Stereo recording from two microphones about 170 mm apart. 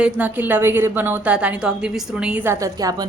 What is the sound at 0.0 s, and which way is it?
A woman's voice, 10° right (ahead or behind).